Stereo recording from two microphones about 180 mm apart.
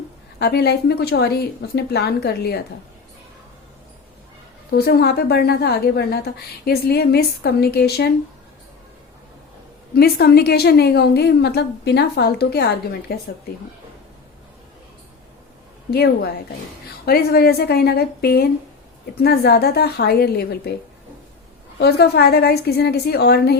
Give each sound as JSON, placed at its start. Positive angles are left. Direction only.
{"t": 0.3, "sound": "a woman's voice", "side_deg": 65}
{"t": 4.7, "sound": "a woman's voice", "side_deg": 65}
{"t": 9.9, "sound": "a woman's voice", "side_deg": 60}
{"t": 15.9, "sound": "a woman's voice", "side_deg": 60}
{"t": 21.8, "sound": "a woman's voice", "side_deg": 65}